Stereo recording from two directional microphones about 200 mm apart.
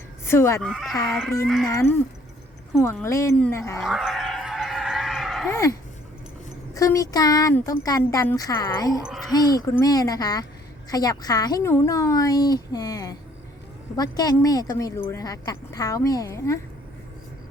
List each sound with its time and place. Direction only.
0.3 s a woman's voice: 15° left (ahead or behind)
0.6 s speech: centre (ahead or behind)
1.6 s a woman's voice: 15° left (ahead or behind)
3.8 s a sound: centre (ahead or behind)
5.5 s a woman's voice: 15° left (ahead or behind)
6.7 s a woman's voice: 15° left (ahead or behind)